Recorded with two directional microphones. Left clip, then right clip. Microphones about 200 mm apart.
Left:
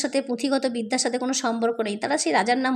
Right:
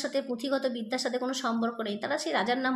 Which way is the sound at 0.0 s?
35° left (ahead or behind).